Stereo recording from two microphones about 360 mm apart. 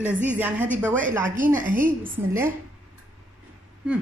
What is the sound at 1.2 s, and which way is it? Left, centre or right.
Speech, right.